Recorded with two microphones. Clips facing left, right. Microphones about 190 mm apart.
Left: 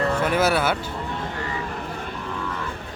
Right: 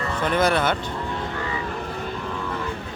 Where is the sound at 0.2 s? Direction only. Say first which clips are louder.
Right 4 dB; 5° left (ahead or behind).